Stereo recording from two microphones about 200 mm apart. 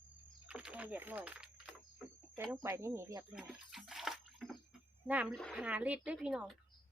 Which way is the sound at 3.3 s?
5° right (ahead or behind).